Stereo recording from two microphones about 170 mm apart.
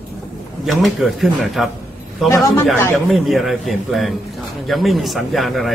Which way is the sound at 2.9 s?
Centre (ahead or behind).